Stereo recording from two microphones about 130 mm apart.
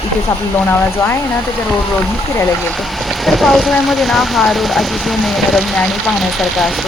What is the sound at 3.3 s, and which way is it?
Speech, centre (ahead or behind).